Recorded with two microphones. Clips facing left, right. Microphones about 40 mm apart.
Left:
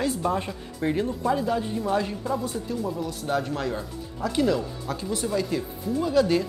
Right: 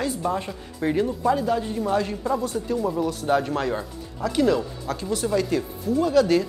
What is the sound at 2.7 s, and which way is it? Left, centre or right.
Speech, centre.